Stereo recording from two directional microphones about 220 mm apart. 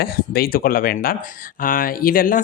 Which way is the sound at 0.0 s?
40° left (ahead or behind).